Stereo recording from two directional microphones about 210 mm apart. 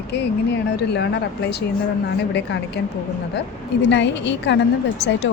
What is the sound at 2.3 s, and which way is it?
Speech, 55° left (ahead or behind).